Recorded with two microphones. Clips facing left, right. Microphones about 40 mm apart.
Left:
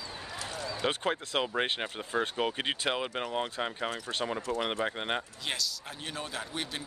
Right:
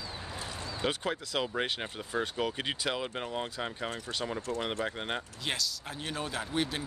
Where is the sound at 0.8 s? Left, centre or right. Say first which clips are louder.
Left 1 dB; left.